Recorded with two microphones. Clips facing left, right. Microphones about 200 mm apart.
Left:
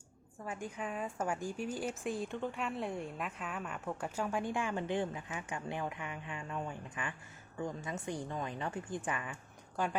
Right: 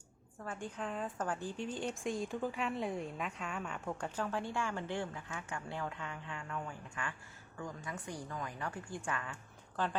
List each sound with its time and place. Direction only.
0.4 s a woman's voice: 10° left (ahead or behind)